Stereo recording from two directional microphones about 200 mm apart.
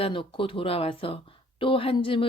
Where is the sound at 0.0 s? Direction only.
25° left (ahead or behind).